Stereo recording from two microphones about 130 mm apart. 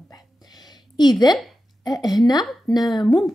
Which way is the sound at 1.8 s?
30° left (ahead or behind).